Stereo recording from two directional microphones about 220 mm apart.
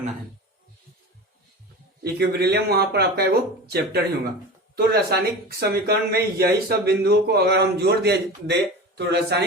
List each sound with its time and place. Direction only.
2.1 s speech: 45° right (ahead or behind)